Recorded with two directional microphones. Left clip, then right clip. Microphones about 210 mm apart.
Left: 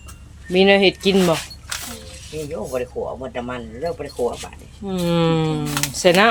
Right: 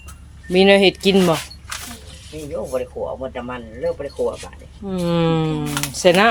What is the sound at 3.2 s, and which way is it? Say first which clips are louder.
Speech: even; 50° left (ahead or behind).